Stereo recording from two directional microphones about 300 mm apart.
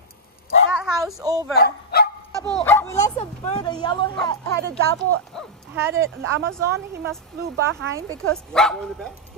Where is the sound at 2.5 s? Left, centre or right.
Centre.